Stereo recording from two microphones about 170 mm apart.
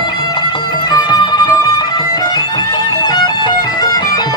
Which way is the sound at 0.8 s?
25° left (ahead or behind).